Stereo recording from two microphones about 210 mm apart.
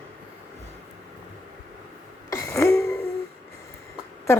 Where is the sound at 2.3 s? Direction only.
15° left (ahead or behind).